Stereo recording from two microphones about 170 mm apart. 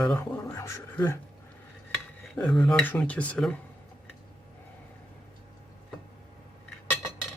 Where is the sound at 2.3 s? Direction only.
5° left (ahead or behind).